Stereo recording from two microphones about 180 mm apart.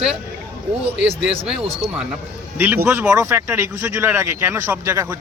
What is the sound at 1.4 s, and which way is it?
A man's voice, 5° right (ahead or behind).